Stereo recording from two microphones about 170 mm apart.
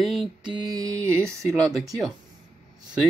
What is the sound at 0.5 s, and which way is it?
Mantra, 20° right (ahead or behind).